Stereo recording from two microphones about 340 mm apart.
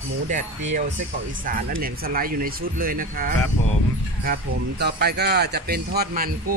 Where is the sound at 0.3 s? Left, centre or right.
Right.